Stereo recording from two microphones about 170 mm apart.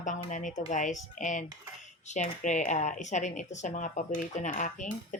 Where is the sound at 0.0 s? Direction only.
45° left (ahead or behind).